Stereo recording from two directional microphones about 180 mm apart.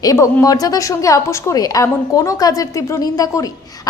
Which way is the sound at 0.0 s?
20° left (ahead or behind).